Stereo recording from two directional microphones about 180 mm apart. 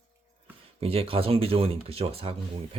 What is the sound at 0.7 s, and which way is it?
Speech, 30° right (ahead or behind).